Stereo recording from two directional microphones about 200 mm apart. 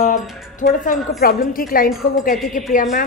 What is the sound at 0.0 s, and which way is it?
A woman's voice, 40° left (ahead or behind).